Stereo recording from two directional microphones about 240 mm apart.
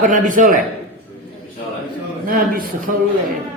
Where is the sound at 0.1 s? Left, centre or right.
Right.